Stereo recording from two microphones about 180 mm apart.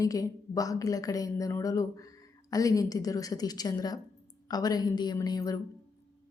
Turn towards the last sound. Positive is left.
turn(degrees=20)  # may be behind; listen again after turning